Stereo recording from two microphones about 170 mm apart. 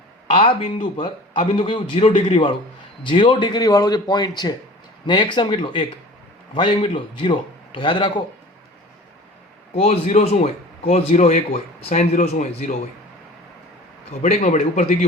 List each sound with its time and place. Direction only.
0.3 s a man's voice: 30° left (ahead or behind)
9.7 s speech: 35° left (ahead or behind)
14.2 s a man's voice: 45° left (ahead or behind)